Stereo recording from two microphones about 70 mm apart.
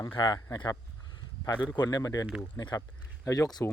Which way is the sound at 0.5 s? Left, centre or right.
Left.